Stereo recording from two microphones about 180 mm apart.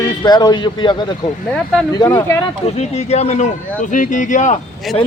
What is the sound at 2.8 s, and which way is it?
Speech, 35° left (ahead or behind).